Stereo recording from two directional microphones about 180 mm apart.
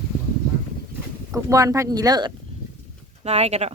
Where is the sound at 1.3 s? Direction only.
20° right (ahead or behind).